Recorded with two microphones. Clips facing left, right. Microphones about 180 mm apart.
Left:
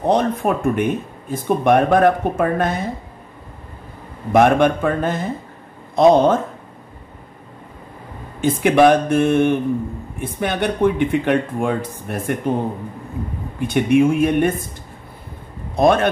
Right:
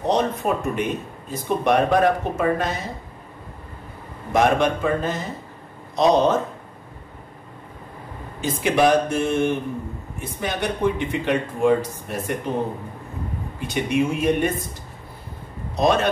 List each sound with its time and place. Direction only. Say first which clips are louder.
0.0 s speech: left 4 dB; 55° left (ahead or behind)
4.3 s speech: left 5 dB; 55° left (ahead or behind)
8.4 s speech: left 6 dB; 55° left (ahead or behind)
13.6 s speech: left 7 dB; 55° left (ahead or behind)
15.7 s a man's voice: left 4 dB; 55° left (ahead or behind)